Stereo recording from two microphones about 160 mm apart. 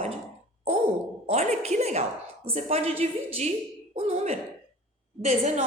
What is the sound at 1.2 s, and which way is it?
A woman's voice, 45° right (ahead or behind).